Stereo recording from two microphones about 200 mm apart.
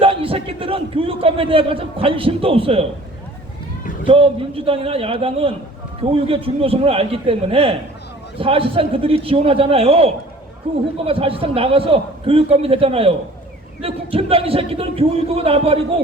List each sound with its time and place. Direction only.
0.0 s a man's voice: 30° right (ahead or behind)
4.0 s a man's voice: 25° right (ahead or behind)